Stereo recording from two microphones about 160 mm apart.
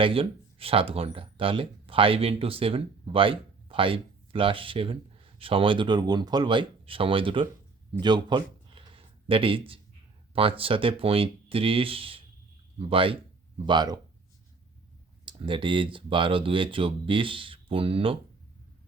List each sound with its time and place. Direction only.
0.0 s speech: 35° right (ahead or behind)
8.0 s a sound: 25° right (ahead or behind)
10.6 s speech: 35° right (ahead or behind)
15.2 s speech: 30° right (ahead or behind)